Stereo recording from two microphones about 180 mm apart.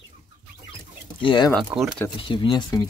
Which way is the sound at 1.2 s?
25° left (ahead or behind).